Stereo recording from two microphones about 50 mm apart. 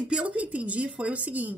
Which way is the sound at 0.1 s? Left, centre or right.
Right.